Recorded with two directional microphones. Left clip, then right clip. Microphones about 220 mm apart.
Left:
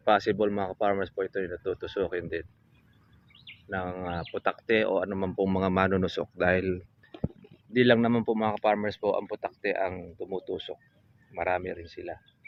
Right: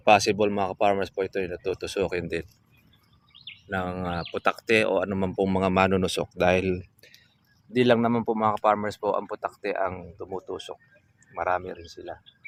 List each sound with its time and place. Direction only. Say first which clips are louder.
0.1 s speech: right 4 dB; 25° right (ahead or behind)
3.7 s speech: right 3 dB; 25° right (ahead or behind); by 11.7 s centre (ahead or behind)